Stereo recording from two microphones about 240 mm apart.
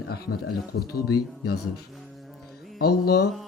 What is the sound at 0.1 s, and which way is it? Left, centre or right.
Speech, left.